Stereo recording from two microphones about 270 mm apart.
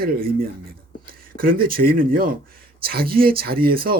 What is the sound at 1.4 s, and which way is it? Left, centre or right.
Speech, right.